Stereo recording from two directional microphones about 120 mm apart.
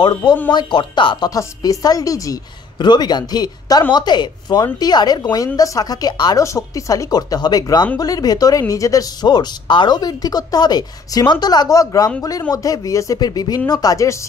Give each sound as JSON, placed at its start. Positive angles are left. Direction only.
{"t": 0.0, "sound": "speech", "side_deg": 40}
{"t": 1.3, "sound": "a woman's voice", "side_deg": 30}